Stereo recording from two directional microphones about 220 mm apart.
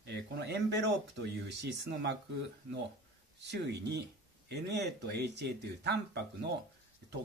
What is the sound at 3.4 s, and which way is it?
Speech, 50° right (ahead or behind).